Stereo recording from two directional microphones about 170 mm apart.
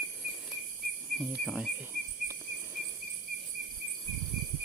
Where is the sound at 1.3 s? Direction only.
5° right (ahead or behind).